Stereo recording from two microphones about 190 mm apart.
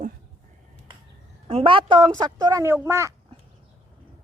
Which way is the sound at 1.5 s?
30° right (ahead or behind).